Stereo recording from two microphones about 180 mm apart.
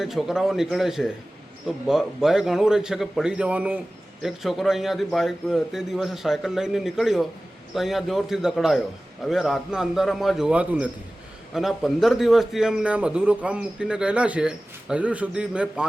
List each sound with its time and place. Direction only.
0.0 s a man's voice: centre (ahead or behind)